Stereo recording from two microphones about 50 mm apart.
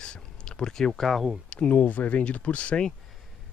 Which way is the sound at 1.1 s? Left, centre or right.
Centre.